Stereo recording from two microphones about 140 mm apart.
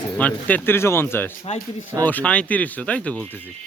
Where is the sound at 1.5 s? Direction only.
50° left (ahead or behind).